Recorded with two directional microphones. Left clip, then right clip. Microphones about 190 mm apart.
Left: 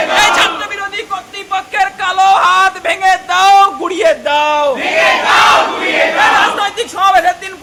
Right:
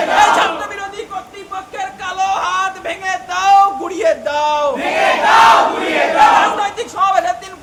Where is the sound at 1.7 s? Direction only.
25° left (ahead or behind).